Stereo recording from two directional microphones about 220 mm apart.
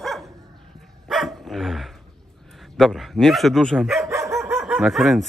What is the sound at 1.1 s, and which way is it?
Dog, centre (ahead or behind).